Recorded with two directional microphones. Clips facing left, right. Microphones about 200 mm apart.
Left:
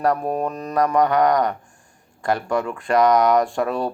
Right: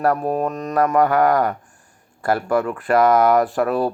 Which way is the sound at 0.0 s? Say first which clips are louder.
Right 2 dB; centre (ahead or behind).